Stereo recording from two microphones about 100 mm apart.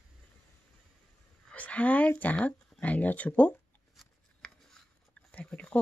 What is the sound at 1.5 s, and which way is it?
Speech, 15° left (ahead or behind).